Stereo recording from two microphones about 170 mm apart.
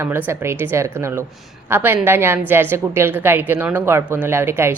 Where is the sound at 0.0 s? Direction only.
15° right (ahead or behind).